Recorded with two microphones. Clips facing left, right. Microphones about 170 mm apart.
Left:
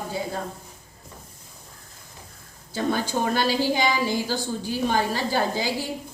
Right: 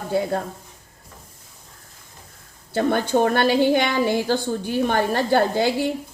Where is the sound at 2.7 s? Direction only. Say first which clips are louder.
Right 5 dB; 60° right (ahead or behind).